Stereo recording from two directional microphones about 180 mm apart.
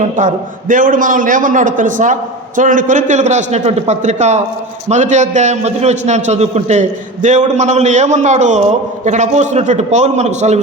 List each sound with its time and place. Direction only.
0.2 s a man's voice: 45° right (ahead or behind)